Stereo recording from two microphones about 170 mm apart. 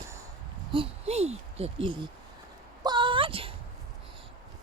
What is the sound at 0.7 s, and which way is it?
Speech, 35° right (ahead or behind).